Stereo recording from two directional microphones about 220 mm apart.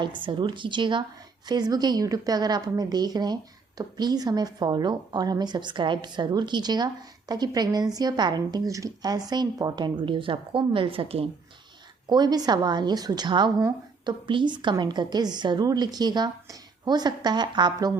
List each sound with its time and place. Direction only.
0.0 s a woman's voice: 20° right (ahead or behind)